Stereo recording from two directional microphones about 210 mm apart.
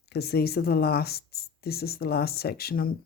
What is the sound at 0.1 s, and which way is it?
Speech, 50° left (ahead or behind).